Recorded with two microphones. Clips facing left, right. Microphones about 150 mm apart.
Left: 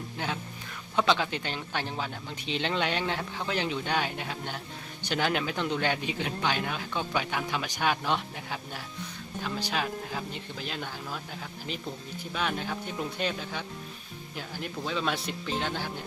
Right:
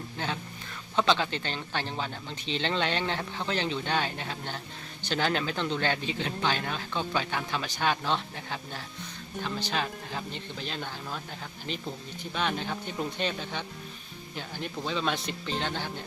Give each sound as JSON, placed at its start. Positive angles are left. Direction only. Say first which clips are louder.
{"t": 0.2, "sound": "speech", "louder": "even", "side_deg": 15}